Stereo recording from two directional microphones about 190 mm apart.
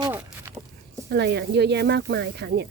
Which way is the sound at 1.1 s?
60° right (ahead or behind).